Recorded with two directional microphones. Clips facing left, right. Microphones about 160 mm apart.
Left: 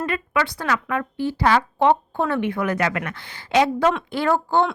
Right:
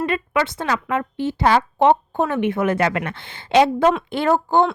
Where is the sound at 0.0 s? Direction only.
25° right (ahead or behind).